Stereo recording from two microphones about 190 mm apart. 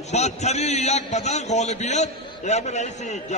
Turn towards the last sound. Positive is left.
turn(degrees=40)  # may be behind; listen again after turning